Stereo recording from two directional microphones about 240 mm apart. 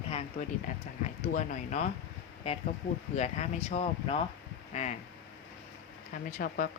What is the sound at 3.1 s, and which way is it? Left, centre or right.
A woman's voice, left.